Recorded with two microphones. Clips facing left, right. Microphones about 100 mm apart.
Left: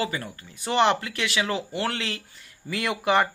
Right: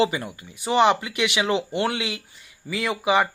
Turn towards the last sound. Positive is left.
turn(degrees=-5)  # may be behind; listen again after turning